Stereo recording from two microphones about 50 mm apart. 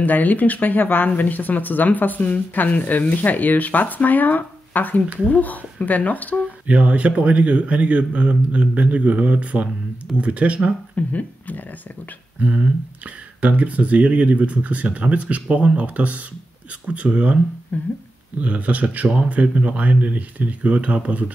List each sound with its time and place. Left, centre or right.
0.0 s speech: left
6.7 s speech: right
11.0 s speech: left
12.4 s speech: right
17.7 s speech: left
18.4 s speech: right